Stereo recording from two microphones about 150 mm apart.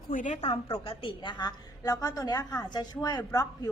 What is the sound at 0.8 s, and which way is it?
A woman's voice, 35° left (ahead or behind).